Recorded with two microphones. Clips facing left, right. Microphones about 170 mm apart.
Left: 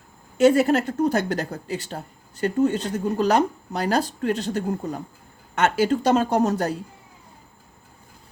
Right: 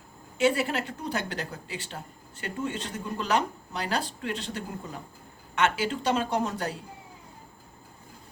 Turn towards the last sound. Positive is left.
turn(degrees=40)  # may be behind; listen again after turning